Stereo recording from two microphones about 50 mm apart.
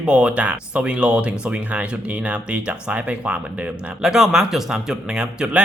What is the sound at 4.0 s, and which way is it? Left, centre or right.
A man's voice, centre.